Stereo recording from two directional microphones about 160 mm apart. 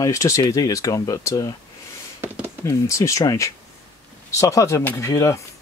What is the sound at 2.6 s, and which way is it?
Speech, 20° left (ahead or behind).